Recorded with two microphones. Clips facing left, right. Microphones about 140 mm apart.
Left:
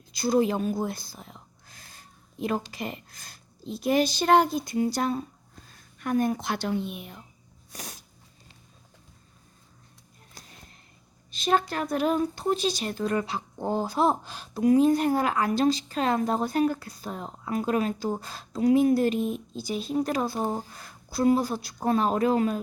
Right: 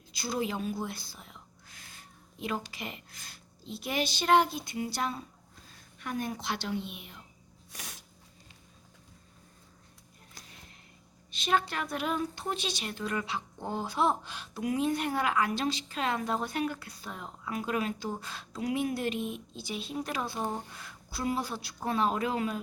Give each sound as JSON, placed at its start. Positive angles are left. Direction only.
{"t": 0.1, "sound": "a sound", "side_deg": 45}
{"t": 2.7, "sound": "speech", "side_deg": 40}
{"t": 7.7, "sound": "music", "side_deg": 40}
{"t": 11.3, "sound": "a woman's voice", "side_deg": 40}